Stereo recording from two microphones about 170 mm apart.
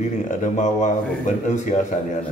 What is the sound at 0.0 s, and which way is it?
Speech, 45° left (ahead or behind).